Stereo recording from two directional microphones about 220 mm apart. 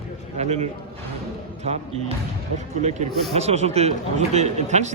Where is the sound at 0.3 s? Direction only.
30° right (ahead or behind).